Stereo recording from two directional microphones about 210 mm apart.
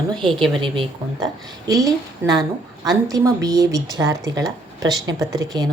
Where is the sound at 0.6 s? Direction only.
20° right (ahead or behind).